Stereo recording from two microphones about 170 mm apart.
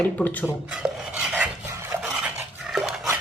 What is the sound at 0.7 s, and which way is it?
Stir, 5° right (ahead or behind).